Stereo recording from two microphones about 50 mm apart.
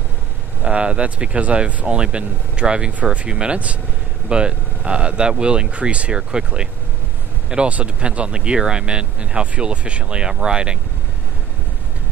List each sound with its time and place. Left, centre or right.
0.6 s speech: right